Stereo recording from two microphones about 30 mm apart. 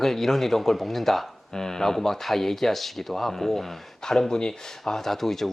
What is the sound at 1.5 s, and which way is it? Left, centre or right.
Speech, centre.